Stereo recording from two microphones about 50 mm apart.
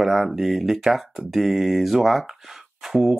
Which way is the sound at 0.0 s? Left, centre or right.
Centre.